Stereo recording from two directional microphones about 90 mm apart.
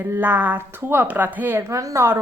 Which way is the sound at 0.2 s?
20° right (ahead or behind).